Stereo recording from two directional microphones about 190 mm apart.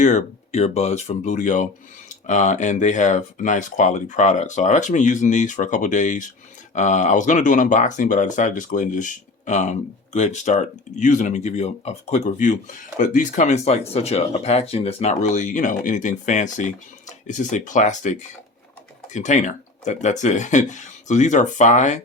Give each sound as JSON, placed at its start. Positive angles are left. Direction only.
{"t": 0.0, "sound": "speech", "side_deg": 40}